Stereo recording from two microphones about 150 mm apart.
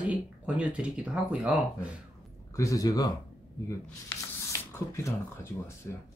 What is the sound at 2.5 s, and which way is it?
Speech, 20° left (ahead or behind).